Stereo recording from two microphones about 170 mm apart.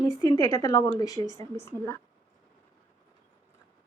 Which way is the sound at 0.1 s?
20° left (ahead or behind).